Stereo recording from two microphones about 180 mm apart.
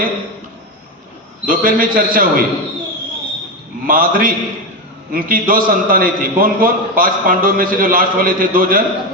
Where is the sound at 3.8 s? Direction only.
50° right (ahead or behind).